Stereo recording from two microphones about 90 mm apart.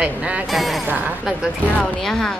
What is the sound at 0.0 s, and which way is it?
Speech, 10° right (ahead or behind).